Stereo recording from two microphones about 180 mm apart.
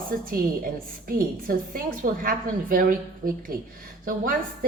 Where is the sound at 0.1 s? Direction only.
50° right (ahead or behind).